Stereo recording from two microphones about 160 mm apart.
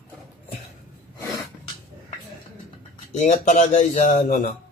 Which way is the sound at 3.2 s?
50° left (ahead or behind).